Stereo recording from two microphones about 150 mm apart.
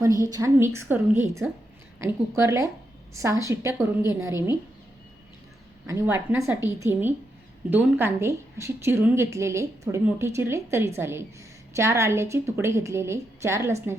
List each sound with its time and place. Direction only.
0.0 s a woman's voice: 20° right (ahead or behind)
5.9 s a woman's voice: 20° right (ahead or behind)